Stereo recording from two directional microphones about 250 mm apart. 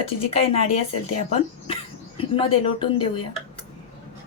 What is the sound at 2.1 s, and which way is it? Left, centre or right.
Speech, left.